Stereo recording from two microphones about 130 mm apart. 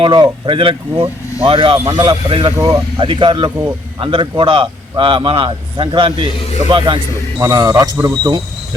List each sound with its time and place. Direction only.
0.0 s speech: 35° right (ahead or behind)
2.6 s speech: 30° right (ahead or behind)
6.2 s speech: 50° left (ahead or behind)
6.7 s speech: 40° right (ahead or behind)
7.3 s a man's voice: 25° right (ahead or behind)